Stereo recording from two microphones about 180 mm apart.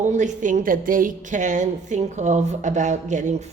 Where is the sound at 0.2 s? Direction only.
45° right (ahead or behind).